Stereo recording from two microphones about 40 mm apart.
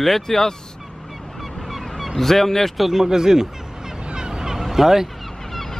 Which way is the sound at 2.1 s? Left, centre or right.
Centre.